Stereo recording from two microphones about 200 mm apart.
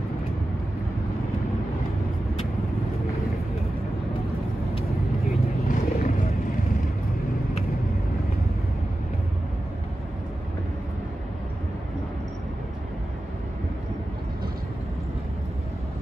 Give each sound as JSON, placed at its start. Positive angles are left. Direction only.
{"t": 5.7, "sound": "vehicle", "side_deg": 45}